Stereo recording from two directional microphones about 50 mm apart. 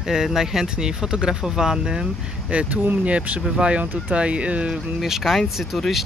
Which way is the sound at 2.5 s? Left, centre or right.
Right.